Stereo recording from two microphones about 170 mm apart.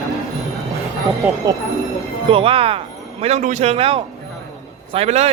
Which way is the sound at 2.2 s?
30° right (ahead or behind).